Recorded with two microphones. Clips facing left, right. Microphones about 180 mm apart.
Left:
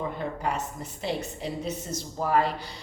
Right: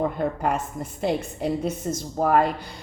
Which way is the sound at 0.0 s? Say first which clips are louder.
Right 6 dB; 50° right (ahead or behind).